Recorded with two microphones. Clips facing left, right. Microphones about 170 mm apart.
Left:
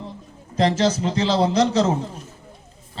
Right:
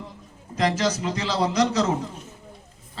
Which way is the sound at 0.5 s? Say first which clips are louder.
Left 4 dB; 30° left (ahead or behind).